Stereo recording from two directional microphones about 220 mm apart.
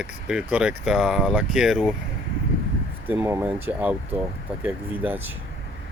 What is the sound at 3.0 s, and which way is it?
Speech, 10° right (ahead or behind).